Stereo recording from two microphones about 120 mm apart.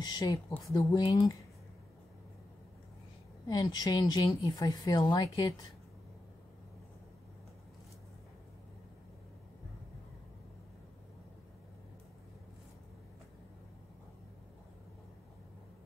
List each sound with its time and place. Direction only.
0.0 s speech: 35° left (ahead or behind)
3.4 s speech: 30° left (ahead or behind)